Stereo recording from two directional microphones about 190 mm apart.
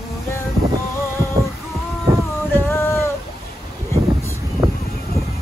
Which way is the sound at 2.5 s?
10° left (ahead or behind).